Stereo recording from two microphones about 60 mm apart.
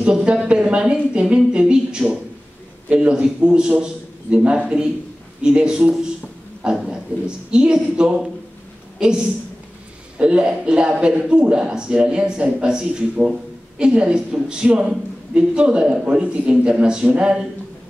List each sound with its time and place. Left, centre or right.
0.0 s a woman's voice: centre
1.1 s a sound: centre
2.9 s a woman's voice: centre